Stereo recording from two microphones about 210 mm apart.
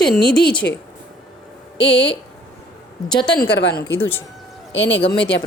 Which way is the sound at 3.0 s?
20° left (ahead or behind).